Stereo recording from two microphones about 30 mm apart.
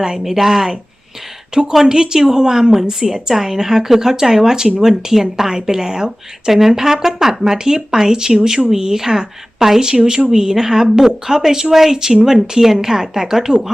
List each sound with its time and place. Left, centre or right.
0.3 s a woman's voice: centre